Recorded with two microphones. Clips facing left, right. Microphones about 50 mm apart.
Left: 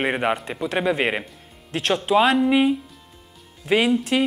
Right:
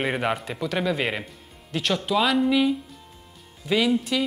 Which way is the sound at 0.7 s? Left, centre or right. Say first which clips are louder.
Left 4 dB; left.